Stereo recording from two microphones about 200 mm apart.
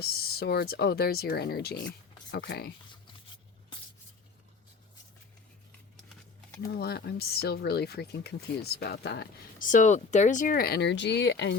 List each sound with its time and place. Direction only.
0.0 s speech: 50° left (ahead or behind)
6.7 s speech: 55° left (ahead or behind)
9.7 s speech: 35° left (ahead or behind); by 11.5 s 60° left (ahead or behind)